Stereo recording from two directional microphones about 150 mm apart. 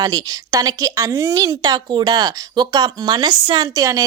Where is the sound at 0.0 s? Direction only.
25° right (ahead or behind).